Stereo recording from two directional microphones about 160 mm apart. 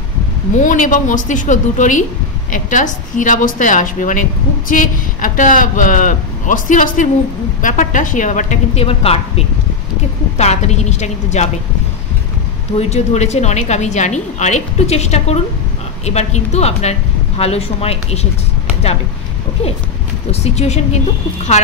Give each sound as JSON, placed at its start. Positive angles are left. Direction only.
{"t": 0.6, "sound": "a woman's voice", "side_deg": 55}
{"t": 10.3, "sound": "a woman's voice", "side_deg": 45}
{"t": 12.7, "sound": "a woman's voice", "side_deg": 40}
{"t": 20.2, "sound": "a woman's voice", "side_deg": 40}